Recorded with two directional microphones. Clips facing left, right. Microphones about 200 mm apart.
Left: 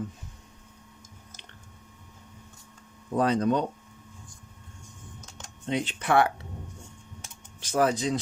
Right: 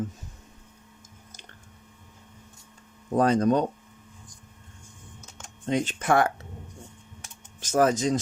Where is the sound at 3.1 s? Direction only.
45° right (ahead or behind).